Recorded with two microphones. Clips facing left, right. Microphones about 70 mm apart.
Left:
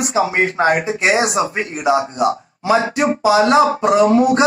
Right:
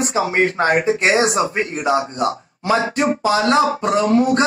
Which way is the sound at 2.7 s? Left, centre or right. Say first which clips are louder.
Even; left.